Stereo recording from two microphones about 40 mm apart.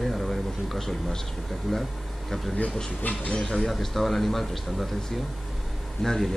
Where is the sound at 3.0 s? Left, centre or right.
Left.